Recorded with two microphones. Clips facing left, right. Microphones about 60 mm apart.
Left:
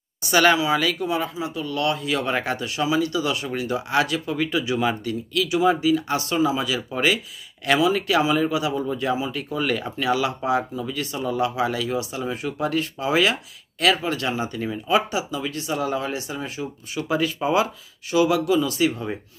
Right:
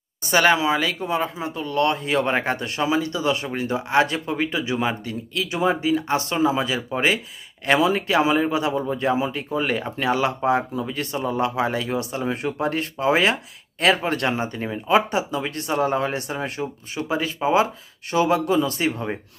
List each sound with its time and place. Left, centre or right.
0.3 s speech: right
9.3 s speech: right
17.1 s speech: right
18.1 s speech: right